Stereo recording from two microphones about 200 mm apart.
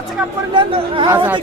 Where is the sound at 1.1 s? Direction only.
10° right (ahead or behind).